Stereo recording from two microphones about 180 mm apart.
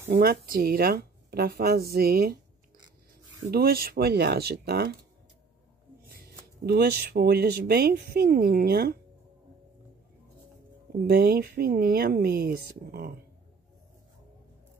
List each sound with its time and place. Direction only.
0.1 s speech: 55° right (ahead or behind)
3.5 s speech: 55° right (ahead or behind)
6.0 s speech: 60° right (ahead or behind)
11.1 s speech: 60° right (ahead or behind)